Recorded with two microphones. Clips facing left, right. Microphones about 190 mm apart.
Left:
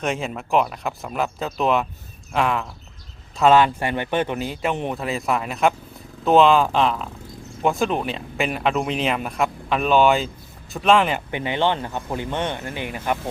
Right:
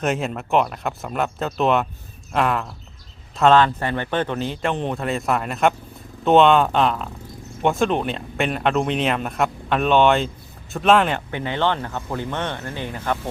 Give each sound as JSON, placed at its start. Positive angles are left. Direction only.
{"t": 0.0, "sound": "speech", "side_deg": 0}
{"t": 11.3, "sound": "speech", "side_deg": 15}